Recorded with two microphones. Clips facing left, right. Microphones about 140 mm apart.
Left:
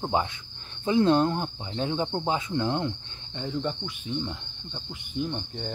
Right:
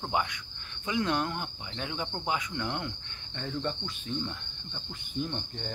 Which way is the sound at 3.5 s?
10° left (ahead or behind).